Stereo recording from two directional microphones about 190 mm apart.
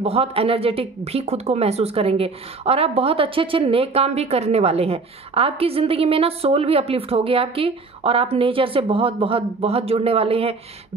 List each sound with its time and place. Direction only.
0.0 s speech: 30° right (ahead or behind)